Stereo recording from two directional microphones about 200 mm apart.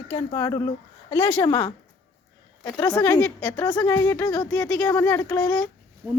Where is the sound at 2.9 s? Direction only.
5° left (ahead or behind).